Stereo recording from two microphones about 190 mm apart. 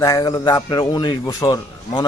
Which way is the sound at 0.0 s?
20° left (ahead or behind).